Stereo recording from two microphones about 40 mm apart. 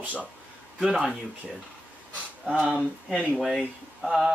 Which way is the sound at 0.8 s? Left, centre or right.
Centre.